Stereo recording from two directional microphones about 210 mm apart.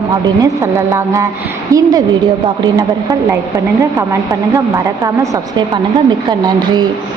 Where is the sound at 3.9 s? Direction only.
15° right (ahead or behind).